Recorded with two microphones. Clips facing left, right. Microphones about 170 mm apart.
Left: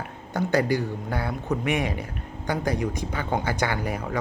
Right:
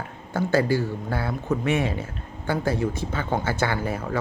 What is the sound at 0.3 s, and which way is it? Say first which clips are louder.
Speech: right 1 dB; 20° left (ahead or behind).